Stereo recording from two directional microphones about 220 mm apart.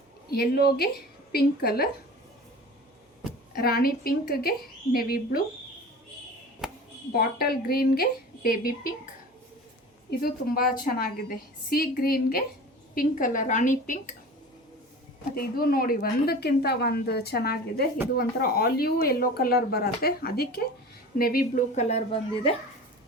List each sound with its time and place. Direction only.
0.3 s a woman's voice: 45° left (ahead or behind)
3.5 s a woman's voice: 45° left (ahead or behind)
6.6 s a sound: centre (ahead or behind)
7.1 s a woman's voice: 45° left (ahead or behind)
10.1 s a woman's voice: 45° left (ahead or behind)
15.4 s a woman's voice: 40° left (ahead or behind)